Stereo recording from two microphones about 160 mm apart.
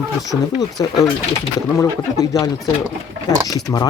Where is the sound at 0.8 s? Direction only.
25° left (ahead or behind).